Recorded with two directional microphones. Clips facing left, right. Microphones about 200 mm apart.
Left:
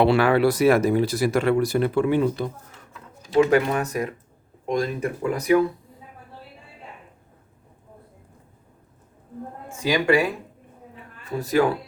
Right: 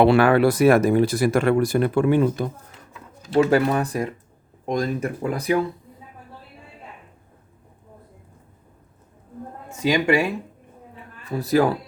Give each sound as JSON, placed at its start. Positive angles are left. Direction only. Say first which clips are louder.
{"t": 0.0, "sound": "speech", "louder": "right 2 dB", "side_deg": -50}
{"t": 3.5, "sound": "speech", "louder": "right 1 dB", "side_deg": -35}
{"t": 9.6, "sound": "speech", "louder": "right 1 dB", "side_deg": -20}
{"t": 11.3, "sound": "speech", "louder": "right 1 dB", "side_deg": -35}